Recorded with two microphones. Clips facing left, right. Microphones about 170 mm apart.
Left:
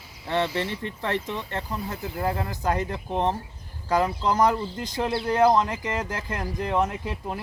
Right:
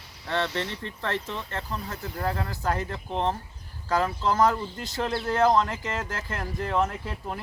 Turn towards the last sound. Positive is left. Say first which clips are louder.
# left 3 dB
turn(degrees=15)  # may be behind; listen again after turning